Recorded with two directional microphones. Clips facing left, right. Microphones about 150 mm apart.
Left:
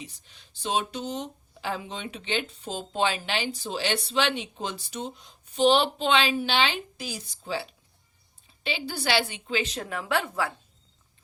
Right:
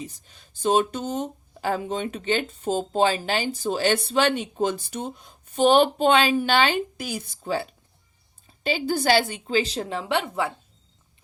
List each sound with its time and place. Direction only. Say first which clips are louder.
0.0 s a woman's voice: right 6 dB; 45° right (ahead or behind); by 10.5 s 20° right (ahead or behind)